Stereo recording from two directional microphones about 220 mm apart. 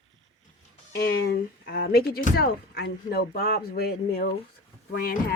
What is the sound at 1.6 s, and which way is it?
Speech, 45° left (ahead or behind).